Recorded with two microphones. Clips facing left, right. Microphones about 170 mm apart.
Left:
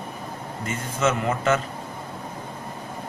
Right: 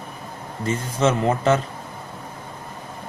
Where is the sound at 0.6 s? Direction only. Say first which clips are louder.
Right 4 dB; 35° right (ahead or behind).